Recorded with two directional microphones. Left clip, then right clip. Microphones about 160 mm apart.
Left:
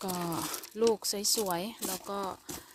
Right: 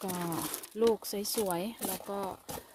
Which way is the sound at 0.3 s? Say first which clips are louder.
Left 1 dB; 15° left (ahead or behind).